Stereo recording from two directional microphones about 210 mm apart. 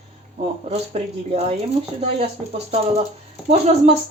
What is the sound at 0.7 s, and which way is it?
Speech, 30° right (ahead or behind).